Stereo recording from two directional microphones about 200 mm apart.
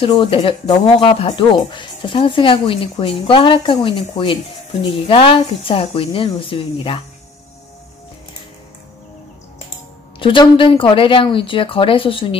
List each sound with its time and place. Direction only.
0.0 s speech: 25° left (ahead or behind)
10.1 s speech: 25° left (ahead or behind)